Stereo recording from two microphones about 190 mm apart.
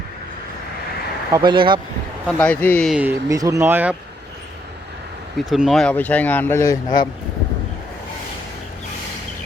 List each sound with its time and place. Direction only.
1.5 s speech: 25° right (ahead or behind)
2.2 s speech: 10° left (ahead or behind)
2.9 s speech: 10° right (ahead or behind)
5.5 s speech: centre (ahead or behind); by 7.1 s 20° left (ahead or behind)